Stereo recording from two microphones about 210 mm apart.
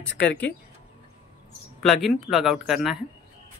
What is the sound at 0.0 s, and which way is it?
Speech, 55° left (ahead or behind).